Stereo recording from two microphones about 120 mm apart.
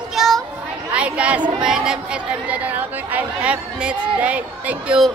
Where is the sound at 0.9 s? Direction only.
10° right (ahead or behind).